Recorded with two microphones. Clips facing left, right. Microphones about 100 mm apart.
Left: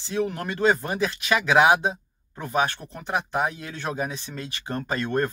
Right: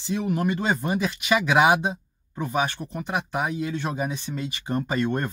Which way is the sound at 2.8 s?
15° right (ahead or behind).